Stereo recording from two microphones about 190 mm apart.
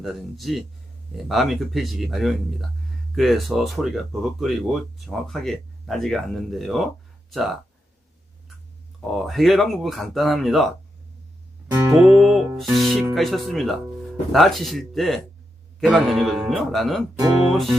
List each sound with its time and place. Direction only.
0.0 s speech: centre (ahead or behind)
9.1 s speech: centre (ahead or behind)
11.7 s music: 15° right (ahead or behind)
12.2 s speech: centre (ahead or behind)